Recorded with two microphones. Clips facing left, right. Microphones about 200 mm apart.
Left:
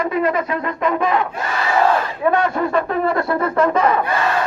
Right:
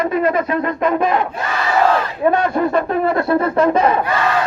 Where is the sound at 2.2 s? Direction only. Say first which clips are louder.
Right 2 dB; 30° right (ahead or behind).